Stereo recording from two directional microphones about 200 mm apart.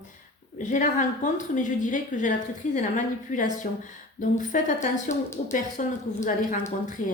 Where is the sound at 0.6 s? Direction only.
40° left (ahead or behind).